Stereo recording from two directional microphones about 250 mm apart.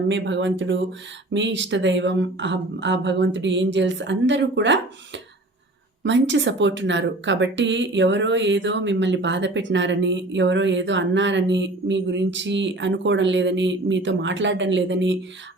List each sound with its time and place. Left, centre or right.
0.1 s speech: right